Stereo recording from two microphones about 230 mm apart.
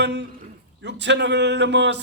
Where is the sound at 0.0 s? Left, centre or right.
Right.